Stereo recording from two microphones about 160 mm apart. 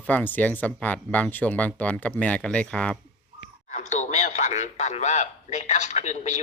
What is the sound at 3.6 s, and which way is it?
Speech, 45° left (ahead or behind).